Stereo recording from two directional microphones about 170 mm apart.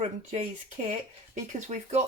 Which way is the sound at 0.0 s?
40° right (ahead or behind).